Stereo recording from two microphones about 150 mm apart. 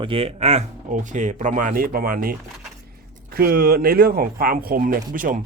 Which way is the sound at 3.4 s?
80° right.